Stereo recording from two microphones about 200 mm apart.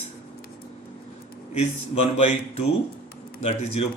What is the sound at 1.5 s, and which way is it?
A man's voice, 35° left (ahead or behind).